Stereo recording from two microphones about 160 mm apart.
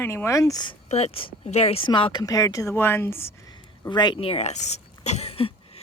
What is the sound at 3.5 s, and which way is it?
Speech, 25° left (ahead or behind).